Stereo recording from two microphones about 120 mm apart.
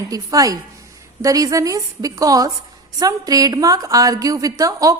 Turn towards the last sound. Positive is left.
turn(degrees=-30)  # may be behind; listen again after turning